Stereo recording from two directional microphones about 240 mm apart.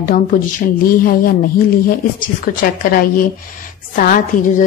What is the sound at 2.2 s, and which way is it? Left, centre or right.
Speech, left.